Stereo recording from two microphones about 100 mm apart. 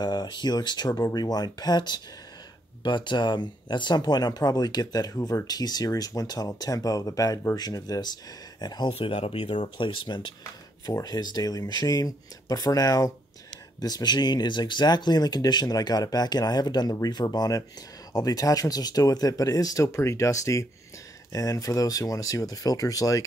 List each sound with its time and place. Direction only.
0.0 s speech: 45° left (ahead or behind)
8.9 s speech: 75° left (ahead or behind); by 10.3 s 50° left (ahead or behind)
10.9 s speech: 40° left (ahead or behind)